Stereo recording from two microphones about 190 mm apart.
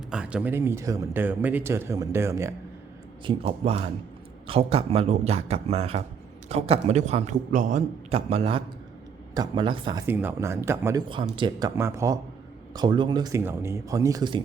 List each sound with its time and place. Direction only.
0.1 s speech: 5° right (ahead or behind)
3.2 s a man's voice: 30° right (ahead or behind)
10.1 s speech: 10° right (ahead or behind)
11.1 s speech: 25° right (ahead or behind)
11.8 s speech: 15° right (ahead or behind)